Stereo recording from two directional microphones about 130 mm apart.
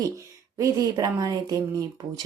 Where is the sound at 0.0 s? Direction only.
25° right (ahead or behind).